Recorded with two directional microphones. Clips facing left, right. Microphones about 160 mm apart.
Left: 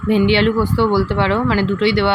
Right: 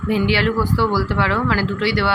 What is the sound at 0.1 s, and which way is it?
Speech, 25° left (ahead or behind).